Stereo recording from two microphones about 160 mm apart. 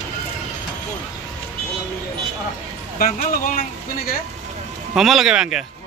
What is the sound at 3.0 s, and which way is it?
Speech, 65° left (ahead or behind).